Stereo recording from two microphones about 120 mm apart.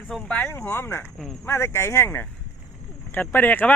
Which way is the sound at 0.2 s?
15° left (ahead or behind).